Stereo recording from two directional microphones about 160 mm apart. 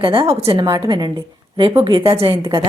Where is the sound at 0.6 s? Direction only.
25° right (ahead or behind).